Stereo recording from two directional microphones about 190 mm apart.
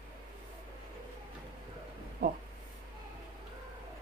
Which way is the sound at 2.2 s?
55° right (ahead or behind).